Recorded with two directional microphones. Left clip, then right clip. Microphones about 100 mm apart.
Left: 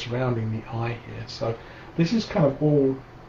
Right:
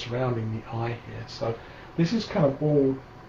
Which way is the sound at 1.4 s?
20° left (ahead or behind).